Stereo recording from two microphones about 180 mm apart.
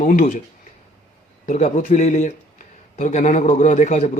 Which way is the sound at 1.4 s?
45° left (ahead or behind).